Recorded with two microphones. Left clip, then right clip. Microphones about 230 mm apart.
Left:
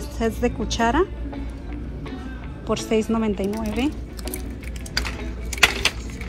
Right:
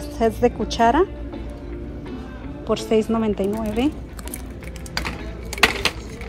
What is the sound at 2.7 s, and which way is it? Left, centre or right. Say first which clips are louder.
Speech: right 2 dB; centre.